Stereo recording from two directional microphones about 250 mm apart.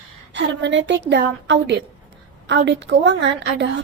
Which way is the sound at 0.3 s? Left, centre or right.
Right.